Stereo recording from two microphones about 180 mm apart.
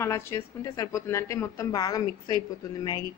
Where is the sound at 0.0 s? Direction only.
15° left (ahead or behind).